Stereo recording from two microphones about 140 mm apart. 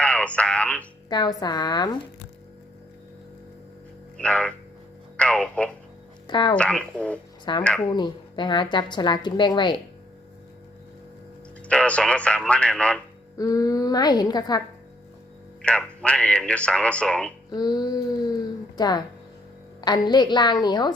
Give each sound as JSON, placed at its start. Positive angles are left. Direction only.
{"t": 0.0, "sound": "speech", "side_deg": 10}
{"t": 1.1, "sound": "a woman's voice", "side_deg": 30}
{"t": 4.2, "sound": "speech", "side_deg": 10}
{"t": 6.2, "sound": "speech", "side_deg": 35}
{"t": 6.6, "sound": "speech", "side_deg": 10}
{"t": 7.5, "sound": "a woman's voice", "side_deg": 35}
{"t": 11.7, "sound": "speech", "side_deg": 10}
{"t": 13.3, "sound": "a woman's voice", "side_deg": 25}
{"t": 15.6, "sound": "speech", "side_deg": 10}
{"t": 17.5, "sound": "a woman's voice", "side_deg": 30}